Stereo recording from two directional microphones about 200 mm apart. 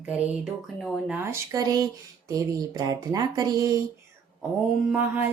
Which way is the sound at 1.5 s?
20° right (ahead or behind).